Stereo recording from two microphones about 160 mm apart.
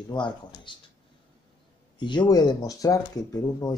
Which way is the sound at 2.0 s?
30° left (ahead or behind).